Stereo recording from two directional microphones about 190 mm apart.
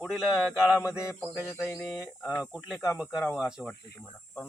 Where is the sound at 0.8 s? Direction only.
15° left (ahead or behind).